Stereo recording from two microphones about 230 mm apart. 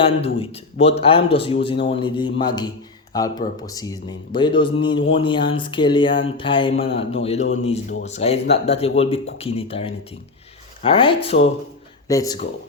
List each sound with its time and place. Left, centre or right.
0.0 s speech: left